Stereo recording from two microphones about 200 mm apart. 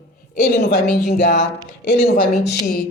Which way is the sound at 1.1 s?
55° left (ahead or behind).